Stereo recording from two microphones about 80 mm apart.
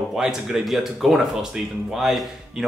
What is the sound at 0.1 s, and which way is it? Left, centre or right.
Speech, centre.